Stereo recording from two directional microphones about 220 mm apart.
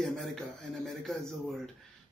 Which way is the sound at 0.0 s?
Centre (ahead or behind).